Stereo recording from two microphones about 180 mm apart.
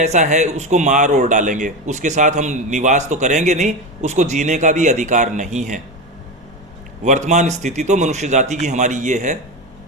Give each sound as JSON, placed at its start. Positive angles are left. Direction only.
{"t": 0.0, "sound": "a man's voice", "side_deg": -40}
{"t": 7.0, "sound": "a man's voice", "side_deg": -40}